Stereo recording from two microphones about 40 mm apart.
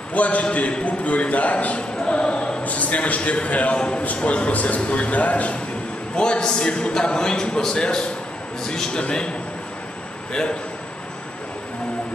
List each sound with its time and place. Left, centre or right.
0.1 s a man's voice: left
2.0 s choir: left
2.6 s a man's voice: left
6.1 s a man's voice: left